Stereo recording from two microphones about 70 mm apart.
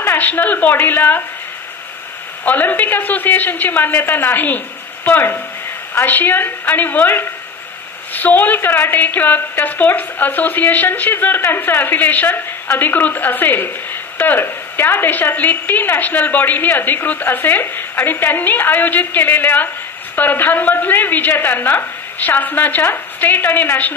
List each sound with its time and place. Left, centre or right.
0.0 s a woman's voice: left
2.4 s a woman's voice: left